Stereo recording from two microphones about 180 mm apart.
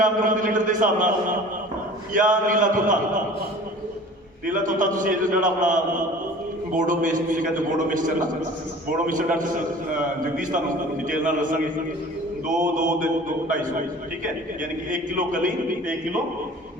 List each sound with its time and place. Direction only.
0.0 s a man's voice: 50° right (ahead or behind)
2.1 s a man's voice: 45° right (ahead or behind)
4.4 s a man's voice: 45° right (ahead or behind)